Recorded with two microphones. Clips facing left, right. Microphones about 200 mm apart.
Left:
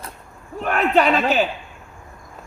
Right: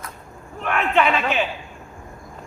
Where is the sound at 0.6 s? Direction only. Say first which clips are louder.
Left 2 dB; 40° left (ahead or behind).